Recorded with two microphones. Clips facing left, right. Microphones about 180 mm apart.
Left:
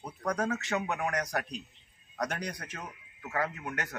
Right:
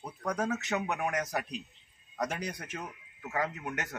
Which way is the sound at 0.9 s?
20° right (ahead or behind).